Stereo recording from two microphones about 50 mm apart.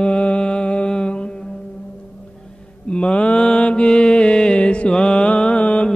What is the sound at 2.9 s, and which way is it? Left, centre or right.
Mantra, left.